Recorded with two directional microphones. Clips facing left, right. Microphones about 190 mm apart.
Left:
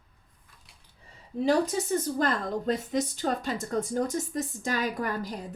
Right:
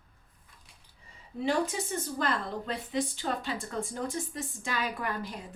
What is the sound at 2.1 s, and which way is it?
A woman's voice, 45° left (ahead or behind).